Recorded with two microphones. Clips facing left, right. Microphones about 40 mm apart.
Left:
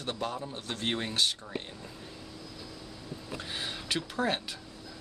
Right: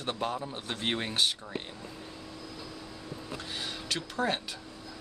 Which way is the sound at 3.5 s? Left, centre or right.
Centre.